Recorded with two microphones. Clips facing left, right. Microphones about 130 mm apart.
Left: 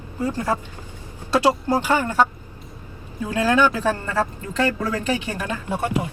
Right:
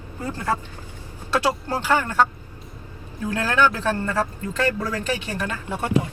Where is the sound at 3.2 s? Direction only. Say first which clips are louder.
Left 2 dB; 15° left (ahead or behind).